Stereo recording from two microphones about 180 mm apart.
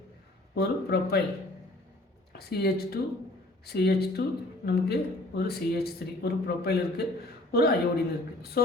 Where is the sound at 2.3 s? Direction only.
60° left (ahead or behind).